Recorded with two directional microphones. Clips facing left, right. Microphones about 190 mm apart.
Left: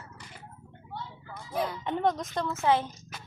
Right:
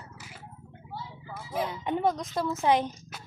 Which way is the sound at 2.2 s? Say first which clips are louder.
Right 1 dB; 15° right (ahead or behind).